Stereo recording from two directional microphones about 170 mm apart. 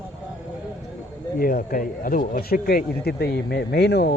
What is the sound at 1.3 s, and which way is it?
Speech, 60° left (ahead or behind).